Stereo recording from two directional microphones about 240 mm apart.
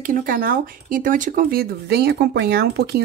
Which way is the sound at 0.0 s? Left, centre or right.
Right.